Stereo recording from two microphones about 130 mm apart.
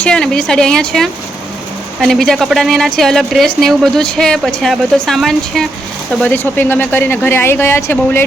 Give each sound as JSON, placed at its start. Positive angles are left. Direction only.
{"t": 0.0, "sound": "a woman's voice", "side_deg": 5}
{"t": 6.2, "sound": "speech", "side_deg": 15}